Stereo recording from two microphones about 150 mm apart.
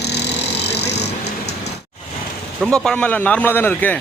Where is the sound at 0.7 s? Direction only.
90° left.